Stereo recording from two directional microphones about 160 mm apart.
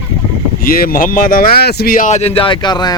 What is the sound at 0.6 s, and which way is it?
Speech, 65° left (ahead or behind).